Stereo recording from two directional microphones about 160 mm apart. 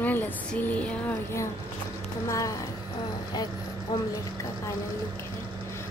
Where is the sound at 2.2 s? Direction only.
20° left (ahead or behind).